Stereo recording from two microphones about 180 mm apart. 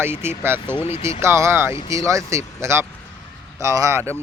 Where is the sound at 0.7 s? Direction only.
35° left (ahead or behind).